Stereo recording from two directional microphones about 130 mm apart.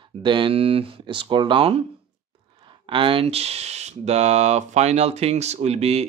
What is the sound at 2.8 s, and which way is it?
Speech, 40° right (ahead or behind).